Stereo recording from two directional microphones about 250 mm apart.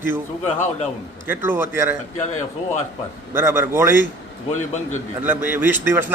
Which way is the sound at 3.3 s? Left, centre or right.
Centre.